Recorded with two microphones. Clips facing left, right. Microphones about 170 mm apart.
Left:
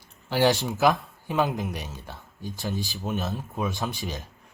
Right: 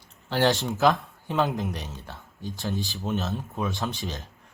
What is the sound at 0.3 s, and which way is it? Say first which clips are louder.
Speech: left 1 dB; 10° left (ahead or behind).